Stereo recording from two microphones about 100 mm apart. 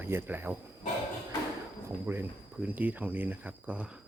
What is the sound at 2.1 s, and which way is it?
Speech, 20° right (ahead or behind).